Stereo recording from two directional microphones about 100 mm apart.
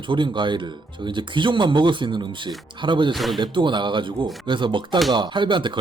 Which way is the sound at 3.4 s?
55° right (ahead or behind).